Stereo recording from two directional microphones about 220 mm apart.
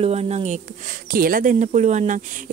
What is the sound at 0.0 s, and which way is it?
Speech, 30° right (ahead or behind).